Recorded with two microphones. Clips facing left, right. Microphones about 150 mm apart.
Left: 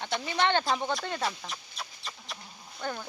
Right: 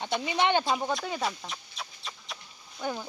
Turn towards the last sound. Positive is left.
turn(degrees=-10)  # may be behind; listen again after turning